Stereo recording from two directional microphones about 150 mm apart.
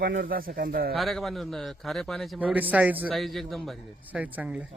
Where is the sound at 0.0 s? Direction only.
75° right (ahead or behind).